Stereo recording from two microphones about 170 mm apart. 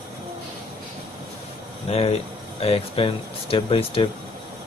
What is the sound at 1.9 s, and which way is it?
Speech, 35° left (ahead or behind).